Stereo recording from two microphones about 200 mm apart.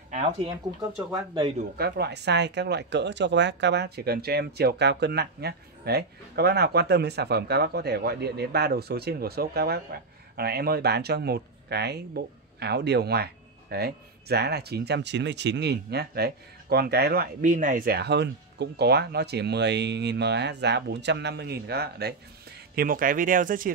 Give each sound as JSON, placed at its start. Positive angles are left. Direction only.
{"t": 1.8, "sound": "speech", "side_deg": -55}